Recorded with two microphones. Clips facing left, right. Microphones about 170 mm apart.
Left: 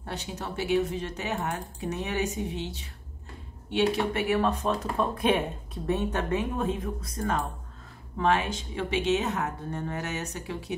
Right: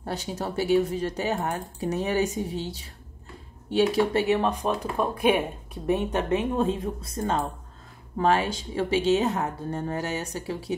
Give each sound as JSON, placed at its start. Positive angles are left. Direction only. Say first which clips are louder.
{"t": 0.0, "sound": "speech", "louder": "right 5 dB", "side_deg": -35}
{"t": 4.4, "sound": "speech", "louder": "right 1 dB", "side_deg": -15}